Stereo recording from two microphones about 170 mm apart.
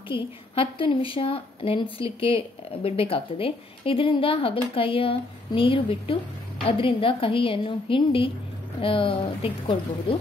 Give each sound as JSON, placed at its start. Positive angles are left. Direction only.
{"t": 0.1, "sound": "a woman's voice", "side_deg": 30}